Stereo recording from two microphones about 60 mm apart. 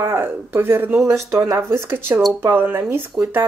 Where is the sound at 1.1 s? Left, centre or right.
Right.